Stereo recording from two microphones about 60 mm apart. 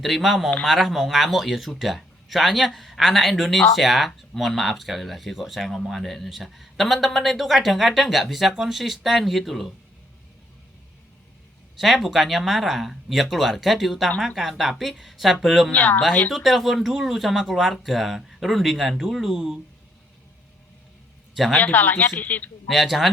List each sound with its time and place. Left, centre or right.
0.0 s speech: centre
11.8 s speech: centre
15.7 s speech: left
16.3 s speech: centre
21.5 s speech: left
22.6 s speech: centre